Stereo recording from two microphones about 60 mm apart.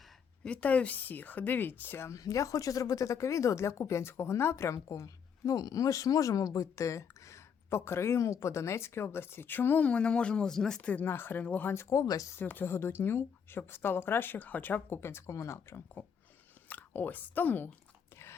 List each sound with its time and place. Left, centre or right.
0.4 s speech: left
2.0 s speech: left
9.9 s speech: centre
11.0 s a woman's voice: left
11.4 s speech: left
11.7 s speech: left
11.9 s speech: left
12.4 s a woman's voice: left
16.6 s speech: left